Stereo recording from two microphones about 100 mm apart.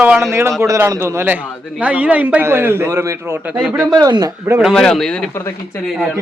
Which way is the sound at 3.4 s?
10° right (ahead or behind).